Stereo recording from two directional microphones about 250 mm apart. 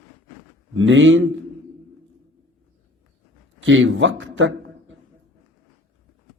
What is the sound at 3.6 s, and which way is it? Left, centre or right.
Speech, right.